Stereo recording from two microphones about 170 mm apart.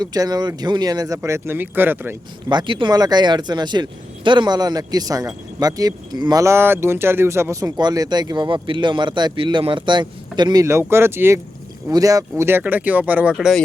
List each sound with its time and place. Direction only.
0.0 s speech: 25° right (ahead or behind)
2.5 s speech: 30° right (ahead or behind); by 13.6 s centre (ahead or behind)